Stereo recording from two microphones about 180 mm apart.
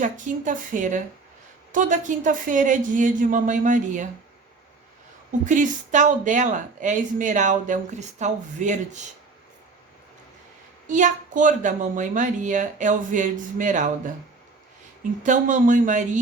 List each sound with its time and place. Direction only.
0.0 s speech: 45° right (ahead or behind)
5.5 s speech: 45° right (ahead or behind)
10.8 s speech: 45° right (ahead or behind)
15.2 s speech: 45° right (ahead or behind)